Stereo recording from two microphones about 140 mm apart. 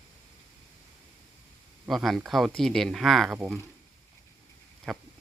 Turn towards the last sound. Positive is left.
turn(degrees=0)  # may be behind; listen again after turning